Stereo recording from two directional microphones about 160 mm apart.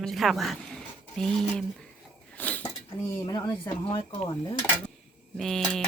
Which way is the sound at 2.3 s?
10° left (ahead or behind).